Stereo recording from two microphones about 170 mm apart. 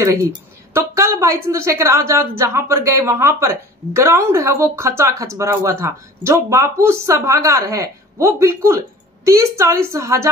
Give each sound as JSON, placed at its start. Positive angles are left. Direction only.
{"t": 0.0, "sound": "a woman's voice", "side_deg": -20}